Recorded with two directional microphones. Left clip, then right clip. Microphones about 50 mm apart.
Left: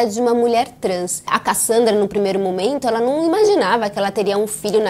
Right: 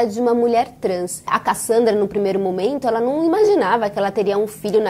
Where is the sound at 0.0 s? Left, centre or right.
Right.